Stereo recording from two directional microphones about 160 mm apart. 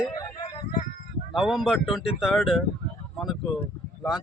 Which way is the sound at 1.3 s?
5° right (ahead or behind).